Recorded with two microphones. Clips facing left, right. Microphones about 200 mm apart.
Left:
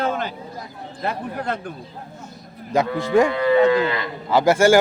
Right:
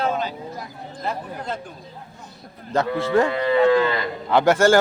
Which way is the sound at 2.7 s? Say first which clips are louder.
Left 1 dB; 15° left (ahead or behind).